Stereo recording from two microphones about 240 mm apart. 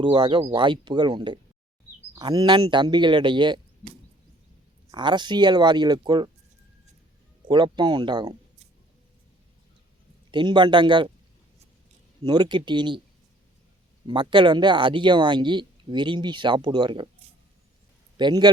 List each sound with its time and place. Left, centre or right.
0.0 s speech: centre
7.4 s speech: centre
10.3 s speech: centre
12.2 s speech: centre
14.1 s speech: centre
18.2 s a man's voice: centre